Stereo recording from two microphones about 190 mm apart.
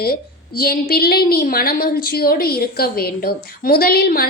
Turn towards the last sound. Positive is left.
turn(degrees=55)  # may be behind; listen again after turning